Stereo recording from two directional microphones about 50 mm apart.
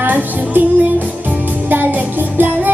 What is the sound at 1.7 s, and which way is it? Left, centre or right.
Music, right.